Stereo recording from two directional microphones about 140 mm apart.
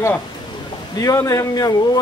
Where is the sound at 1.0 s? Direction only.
25° left (ahead or behind).